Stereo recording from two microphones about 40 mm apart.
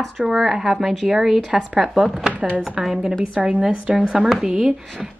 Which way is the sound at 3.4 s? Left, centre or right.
Centre.